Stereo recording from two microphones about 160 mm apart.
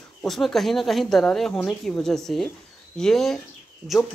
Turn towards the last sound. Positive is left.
turn(degrees=15)  # may be behind; listen again after turning